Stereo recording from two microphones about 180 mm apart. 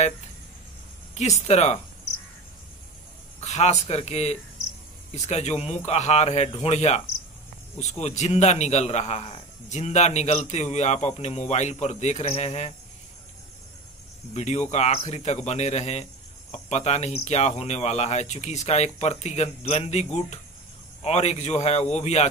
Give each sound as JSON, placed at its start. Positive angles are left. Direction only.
{"t": 1.1, "sound": "a man's voice", "side_deg": 40}
{"t": 3.3, "sound": "a man's voice", "side_deg": 40}
{"t": 14.3, "sound": "a man's voice", "side_deg": 40}